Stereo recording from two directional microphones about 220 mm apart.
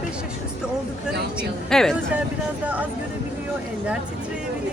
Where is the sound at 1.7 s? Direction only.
Centre (ahead or behind).